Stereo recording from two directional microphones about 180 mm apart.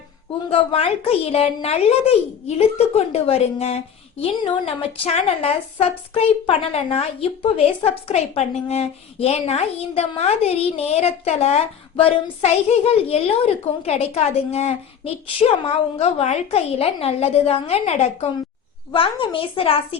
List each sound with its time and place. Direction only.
0.5 s a woman's voice: 30° left (ahead or behind)